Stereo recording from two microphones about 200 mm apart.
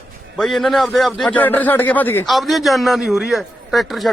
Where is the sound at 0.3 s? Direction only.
Centre (ahead or behind).